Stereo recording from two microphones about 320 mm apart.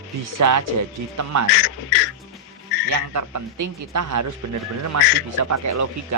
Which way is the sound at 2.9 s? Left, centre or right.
Right.